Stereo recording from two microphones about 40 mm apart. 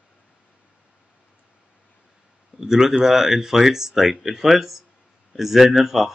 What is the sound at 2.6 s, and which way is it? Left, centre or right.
Speech, centre.